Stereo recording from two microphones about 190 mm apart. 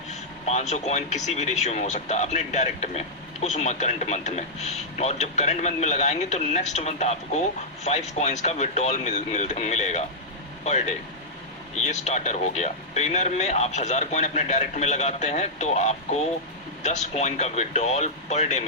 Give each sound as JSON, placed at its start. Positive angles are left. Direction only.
{"t": 0.1, "sound": "speech", "side_deg": 35}